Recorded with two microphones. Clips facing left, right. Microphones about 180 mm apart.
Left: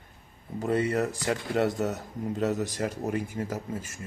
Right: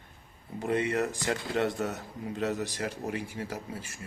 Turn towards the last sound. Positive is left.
turn(degrees=45)  # may be behind; listen again after turning